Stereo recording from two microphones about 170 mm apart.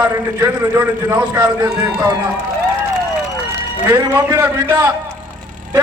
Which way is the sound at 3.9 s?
15° right (ahead or behind).